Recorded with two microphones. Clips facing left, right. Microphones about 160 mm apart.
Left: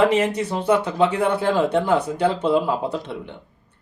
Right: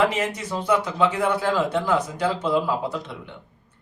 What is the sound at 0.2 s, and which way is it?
Speech, 30° left (ahead or behind).